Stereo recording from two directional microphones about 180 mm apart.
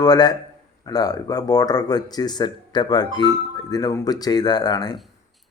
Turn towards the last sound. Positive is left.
turn(degrees=20)  # may be behind; listen again after turning